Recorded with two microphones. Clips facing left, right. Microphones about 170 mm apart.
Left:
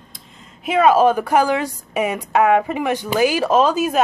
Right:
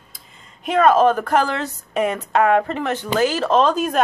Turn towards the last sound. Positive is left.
turn(degrees=5)  # may be behind; listen again after turning